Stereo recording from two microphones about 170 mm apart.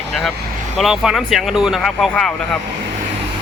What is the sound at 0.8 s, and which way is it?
Speech, 5° right (ahead or behind).